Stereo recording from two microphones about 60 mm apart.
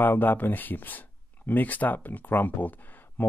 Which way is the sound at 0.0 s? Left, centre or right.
Left.